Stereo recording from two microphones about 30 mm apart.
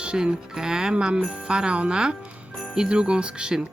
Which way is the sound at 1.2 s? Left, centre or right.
Right.